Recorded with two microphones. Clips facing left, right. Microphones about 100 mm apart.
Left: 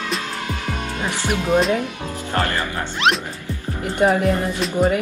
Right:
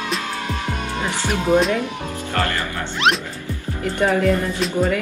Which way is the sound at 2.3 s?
25° left (ahead or behind).